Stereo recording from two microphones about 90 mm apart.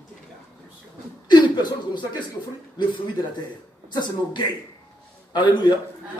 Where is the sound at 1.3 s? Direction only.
55° left (ahead or behind).